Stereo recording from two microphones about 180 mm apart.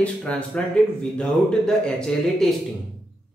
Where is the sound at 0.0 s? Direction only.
5° left (ahead or behind).